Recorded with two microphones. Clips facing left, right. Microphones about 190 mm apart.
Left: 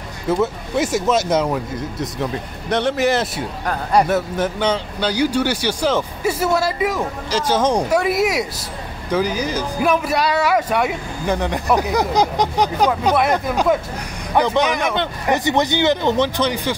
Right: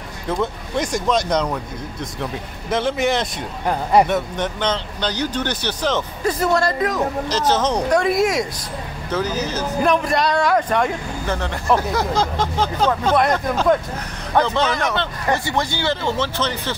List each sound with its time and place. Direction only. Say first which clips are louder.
0.3 s speech: left 4 dB; 5° left (ahead or behind)